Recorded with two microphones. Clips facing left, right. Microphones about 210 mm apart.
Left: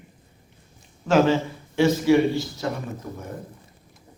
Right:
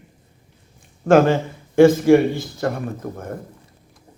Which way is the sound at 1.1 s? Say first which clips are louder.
Right 4 dB; 55° right (ahead or behind).